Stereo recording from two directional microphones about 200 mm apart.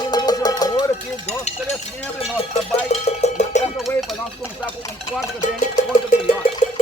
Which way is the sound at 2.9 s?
35° left (ahead or behind).